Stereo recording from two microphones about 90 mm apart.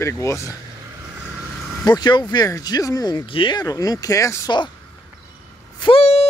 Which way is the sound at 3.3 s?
70° left (ahead or behind).